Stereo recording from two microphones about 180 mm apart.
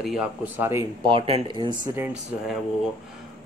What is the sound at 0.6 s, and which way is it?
Speech, 15° right (ahead or behind).